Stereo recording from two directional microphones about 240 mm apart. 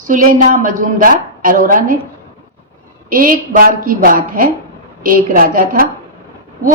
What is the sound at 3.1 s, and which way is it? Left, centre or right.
A woman's voice, right.